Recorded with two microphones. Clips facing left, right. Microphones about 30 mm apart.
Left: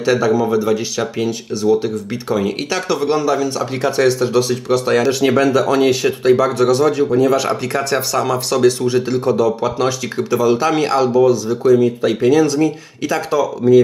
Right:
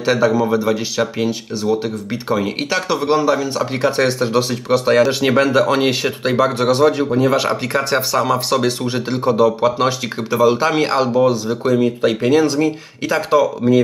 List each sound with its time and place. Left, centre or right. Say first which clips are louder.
0.0 s a man's voice: even; centre